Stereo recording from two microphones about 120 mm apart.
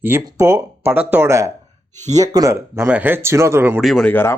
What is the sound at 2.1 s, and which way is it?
Speech, 30° right (ahead or behind).